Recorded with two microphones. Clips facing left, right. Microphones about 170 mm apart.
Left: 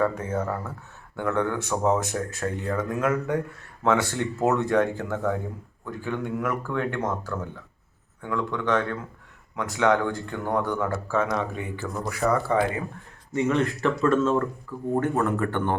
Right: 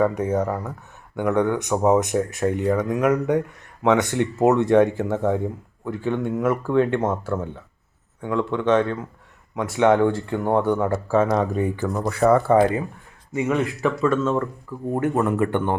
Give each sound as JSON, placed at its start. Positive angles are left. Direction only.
{"t": 0.0, "sound": "speech", "side_deg": -15}
{"t": 12.2, "sound": "speech", "side_deg": -50}
{"t": 13.3, "sound": "speech", "side_deg": -10}
{"t": 14.7, "sound": "speech", "side_deg": -15}